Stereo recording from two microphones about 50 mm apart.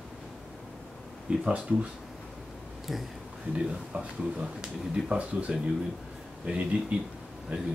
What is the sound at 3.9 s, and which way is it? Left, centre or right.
Speech, right.